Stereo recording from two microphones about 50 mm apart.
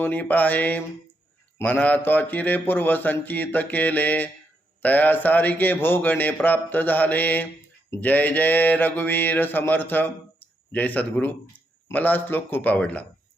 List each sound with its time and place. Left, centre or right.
0.0 s a man's voice: left
12.8 s speech: left